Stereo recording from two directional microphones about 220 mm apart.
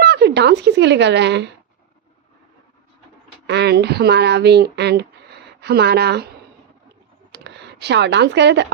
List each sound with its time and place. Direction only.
0.0 s speech: 50° right (ahead or behind)
3.4 s speech: 50° right (ahead or behind)
7.3 s speech: 50° right (ahead or behind)